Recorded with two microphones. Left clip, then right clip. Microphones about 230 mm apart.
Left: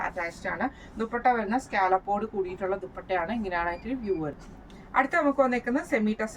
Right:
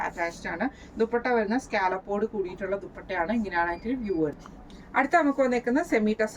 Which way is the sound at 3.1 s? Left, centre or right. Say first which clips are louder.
Even; centre.